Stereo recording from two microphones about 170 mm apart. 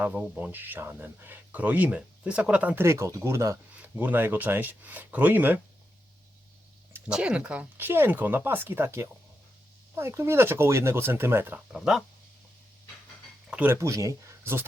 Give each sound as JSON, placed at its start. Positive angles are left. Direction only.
{"t": 0.0, "sound": "speech", "side_deg": -10}
{"t": 6.9, "sound": "speech", "side_deg": -5}
{"t": 11.7, "sound": "speech", "side_deg": 0}
{"t": 13.5, "sound": "speech", "side_deg": -10}